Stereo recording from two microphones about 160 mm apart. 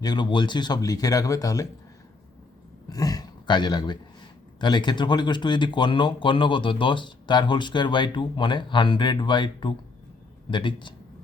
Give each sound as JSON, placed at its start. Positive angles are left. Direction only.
{"t": 0.0, "sound": "speech", "side_deg": 25}
{"t": 2.9, "sound": "speech", "side_deg": 25}